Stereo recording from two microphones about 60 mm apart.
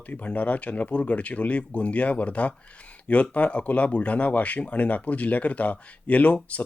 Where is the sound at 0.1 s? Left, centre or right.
Left.